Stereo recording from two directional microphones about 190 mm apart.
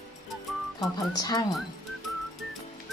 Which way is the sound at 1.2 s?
20° left (ahead or behind).